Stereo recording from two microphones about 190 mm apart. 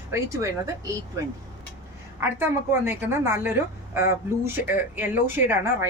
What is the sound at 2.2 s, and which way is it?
A woman's voice, 10° right (ahead or behind).